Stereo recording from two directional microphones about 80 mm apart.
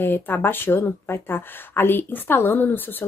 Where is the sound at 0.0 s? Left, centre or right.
Left.